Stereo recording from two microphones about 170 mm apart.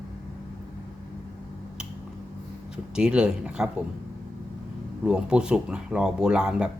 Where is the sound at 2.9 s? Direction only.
5° right (ahead or behind).